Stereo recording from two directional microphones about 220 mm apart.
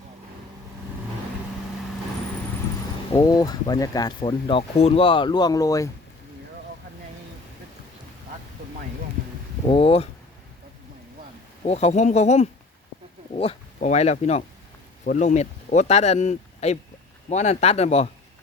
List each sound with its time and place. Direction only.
3.2 s speech: 15° left (ahead or behind)
9.6 s speech: 25° left (ahead or behind)
11.6 s speech: 30° left (ahead or behind)